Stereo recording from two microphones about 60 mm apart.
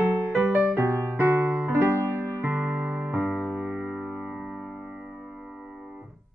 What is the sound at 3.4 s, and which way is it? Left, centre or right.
Music, right.